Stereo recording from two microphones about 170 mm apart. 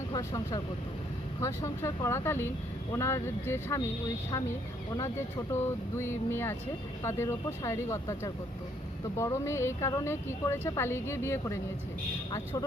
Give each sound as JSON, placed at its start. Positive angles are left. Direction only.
{"t": 0.1, "sound": "a woman's voice", "side_deg": 20}
{"t": 4.9, "sound": "a woman's voice", "side_deg": 20}